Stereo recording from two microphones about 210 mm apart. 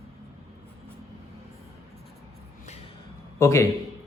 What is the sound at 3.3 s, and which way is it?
Speech, 15° left (ahead or behind).